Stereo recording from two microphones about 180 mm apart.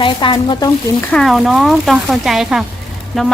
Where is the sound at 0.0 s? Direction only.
25° left (ahead or behind).